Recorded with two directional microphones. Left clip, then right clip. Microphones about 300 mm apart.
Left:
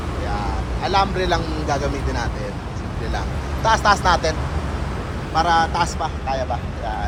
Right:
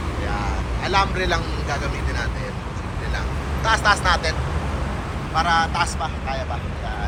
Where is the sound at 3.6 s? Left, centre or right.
Centre.